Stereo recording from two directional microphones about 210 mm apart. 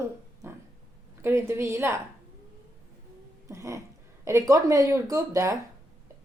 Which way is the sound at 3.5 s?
15° right (ahead or behind).